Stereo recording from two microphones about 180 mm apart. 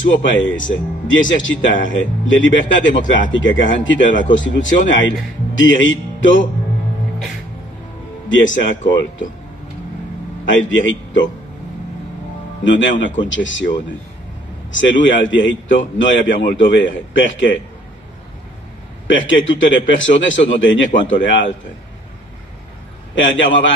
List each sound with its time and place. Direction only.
0.2 s speech: 90° left
8.3 s speech: 90° left
10.4 s speech: 90° left
12.6 s speech: 90° left
14.7 s speech: 90° left
19.0 s speech: 90° left
23.1 s speech: 90° left